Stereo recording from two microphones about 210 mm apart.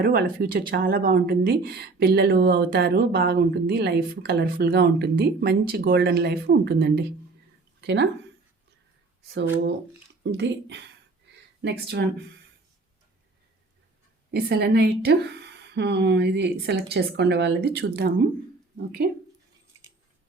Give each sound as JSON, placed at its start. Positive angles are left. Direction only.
{"t": 0.0, "sound": "speech", "side_deg": -45}
{"t": 9.3, "sound": "speech", "side_deg": -55}
{"t": 11.3, "sound": "a sound", "side_deg": -55}
{"t": 14.3, "sound": "speech", "side_deg": -50}